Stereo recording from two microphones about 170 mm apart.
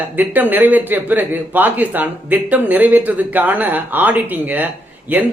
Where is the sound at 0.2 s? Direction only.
10° right (ahead or behind).